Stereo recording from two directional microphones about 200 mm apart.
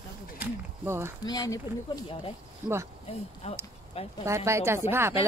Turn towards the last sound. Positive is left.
turn(degrees=-10)  # may be behind; listen again after turning